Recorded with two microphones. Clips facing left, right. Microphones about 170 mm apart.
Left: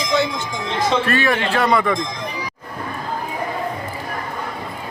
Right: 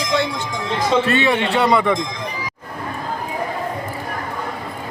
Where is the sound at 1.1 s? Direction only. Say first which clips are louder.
Right 2 dB; 20° right (ahead or behind).